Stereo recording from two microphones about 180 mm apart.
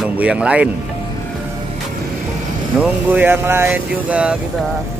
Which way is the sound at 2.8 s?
10° right (ahead or behind).